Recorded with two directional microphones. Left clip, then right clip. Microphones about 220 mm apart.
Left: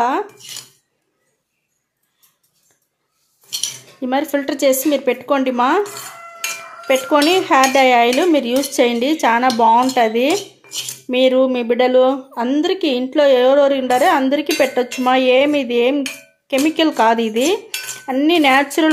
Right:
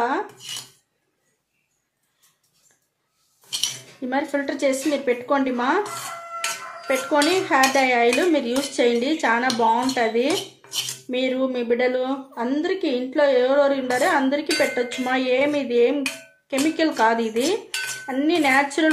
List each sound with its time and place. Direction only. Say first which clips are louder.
4.0 s cutlery: left 5 dB; 35° left (ahead or behind)
6.9 s cutlery: left 6 dB; 30° left (ahead or behind)